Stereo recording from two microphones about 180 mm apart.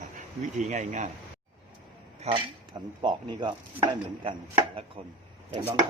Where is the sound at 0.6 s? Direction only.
40° right (ahead or behind).